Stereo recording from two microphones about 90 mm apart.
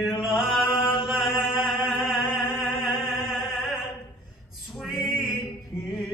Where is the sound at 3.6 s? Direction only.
5° right (ahead or behind).